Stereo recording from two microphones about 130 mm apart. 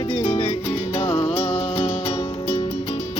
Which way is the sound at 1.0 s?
40° left (ahead or behind).